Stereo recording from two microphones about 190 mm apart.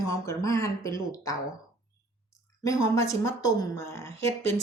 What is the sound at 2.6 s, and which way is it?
Speech, 15° left (ahead or behind).